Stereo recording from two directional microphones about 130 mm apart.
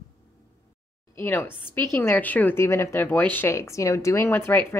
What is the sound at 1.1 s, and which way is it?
Speech, 15° left (ahead or behind).